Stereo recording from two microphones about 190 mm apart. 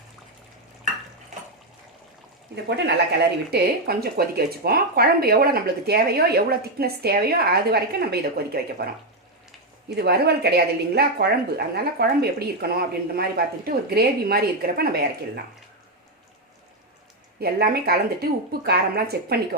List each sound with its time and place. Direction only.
2.6 s speech: 60° right (ahead or behind)
9.9 s speech: 55° right (ahead or behind)
17.4 s speech: 55° right (ahead or behind)